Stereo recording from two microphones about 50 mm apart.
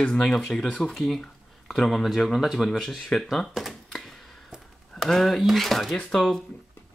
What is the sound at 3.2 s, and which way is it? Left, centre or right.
Typewriter, centre.